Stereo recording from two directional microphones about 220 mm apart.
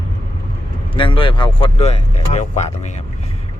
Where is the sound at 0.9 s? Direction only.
20° left (ahead or behind).